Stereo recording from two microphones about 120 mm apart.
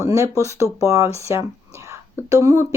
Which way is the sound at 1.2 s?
25° right (ahead or behind).